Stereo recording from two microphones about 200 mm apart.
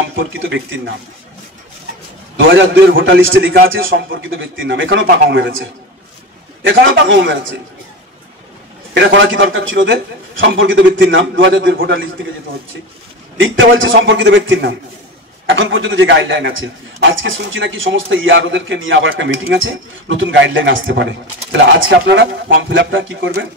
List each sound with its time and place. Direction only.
0.3 s a man's voice: 70° right (ahead or behind)
2.5 s a man's voice: 65° right (ahead or behind)
6.6 s a man's voice: 70° right (ahead or behind)
8.9 s a man's voice: 65° right (ahead or behind)
13.4 s a man's voice: 70° right (ahead or behind)